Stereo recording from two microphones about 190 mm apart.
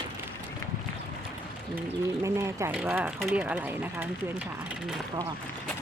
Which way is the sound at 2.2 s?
15° right (ahead or behind).